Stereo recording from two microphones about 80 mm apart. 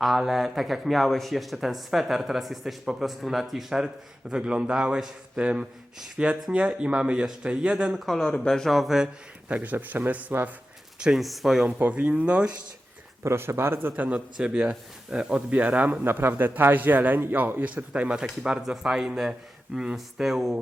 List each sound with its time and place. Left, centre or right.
0.0 s speech: centre
8.0 s speech: centre
9.5 s speech: centre
11.0 s speech: centre
11.8 s speech: centre
13.2 s speech: right; by 20.6 s centre